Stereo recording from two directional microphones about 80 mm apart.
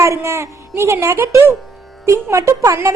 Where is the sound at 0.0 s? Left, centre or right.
Right.